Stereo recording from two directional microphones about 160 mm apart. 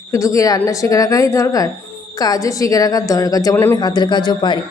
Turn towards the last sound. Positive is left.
turn(degrees=30)  # may be behind; listen again after turning